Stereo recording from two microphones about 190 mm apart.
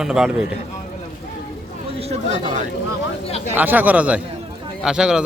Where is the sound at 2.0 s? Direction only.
40° right (ahead or behind).